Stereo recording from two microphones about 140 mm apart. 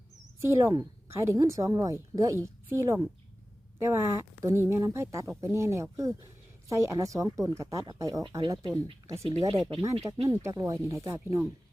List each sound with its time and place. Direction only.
0.3 s a woman's voice: 20° right (ahead or behind)
8.2 s speech: 35° right (ahead or behind)
8.4 s a woman's voice: 25° right (ahead or behind)
9.5 s speech: 45° right (ahead or behind)
10.1 s a woman's voice: 20° right (ahead or behind)